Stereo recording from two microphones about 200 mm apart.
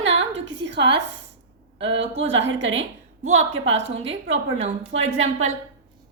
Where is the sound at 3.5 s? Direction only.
70° right (ahead or behind).